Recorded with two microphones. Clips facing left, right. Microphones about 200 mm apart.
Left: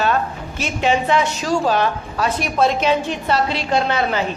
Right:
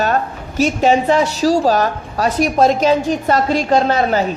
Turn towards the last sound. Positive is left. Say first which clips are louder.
# right 4 dB
turn(degrees=-40)  # may be behind; listen again after turning